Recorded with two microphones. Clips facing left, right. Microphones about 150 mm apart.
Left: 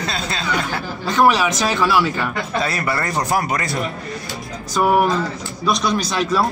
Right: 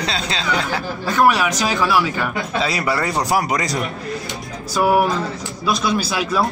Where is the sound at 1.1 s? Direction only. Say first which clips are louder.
Left 1 dB; 10° right (ahead or behind).